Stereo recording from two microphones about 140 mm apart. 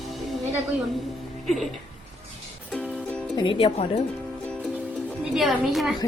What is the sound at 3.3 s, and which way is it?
Speech, 40° left (ahead or behind).